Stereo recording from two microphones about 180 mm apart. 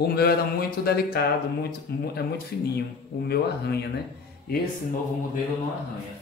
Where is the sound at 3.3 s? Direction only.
65° left (ahead or behind).